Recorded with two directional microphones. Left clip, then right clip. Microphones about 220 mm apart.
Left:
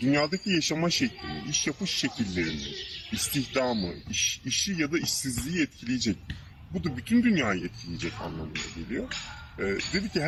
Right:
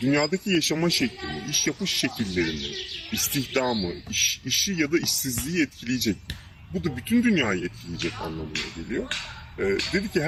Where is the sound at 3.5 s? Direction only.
20° right (ahead or behind).